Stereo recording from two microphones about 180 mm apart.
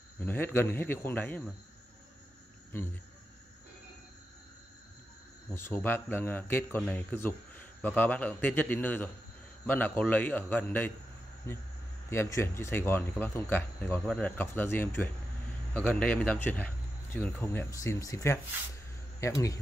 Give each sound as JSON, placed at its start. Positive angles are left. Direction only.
{"t": 0.2, "sound": "speech", "side_deg": 10}
{"t": 5.5, "sound": "speech", "side_deg": 15}